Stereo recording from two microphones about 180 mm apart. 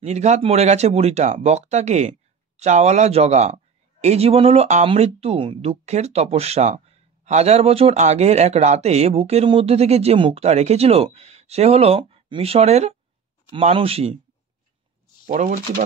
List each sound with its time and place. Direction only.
0.0 s speech: 40° right (ahead or behind)
15.2 s speech: 45° right (ahead or behind)